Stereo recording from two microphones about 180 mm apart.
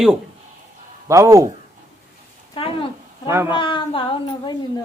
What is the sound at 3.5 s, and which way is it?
Speech, 30° left (ahead or behind).